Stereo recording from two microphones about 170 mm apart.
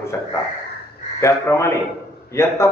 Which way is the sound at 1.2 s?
15° left (ahead or behind).